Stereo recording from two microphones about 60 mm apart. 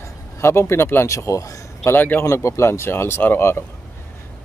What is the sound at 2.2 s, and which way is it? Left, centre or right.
Speech, left.